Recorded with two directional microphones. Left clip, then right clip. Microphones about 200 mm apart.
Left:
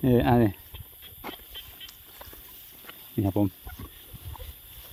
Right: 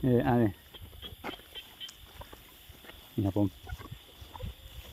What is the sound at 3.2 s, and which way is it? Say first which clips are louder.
Speech: left 4 dB; 30° left (ahead or behind).